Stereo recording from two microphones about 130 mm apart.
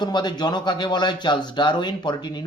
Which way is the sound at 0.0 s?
35° left (ahead or behind).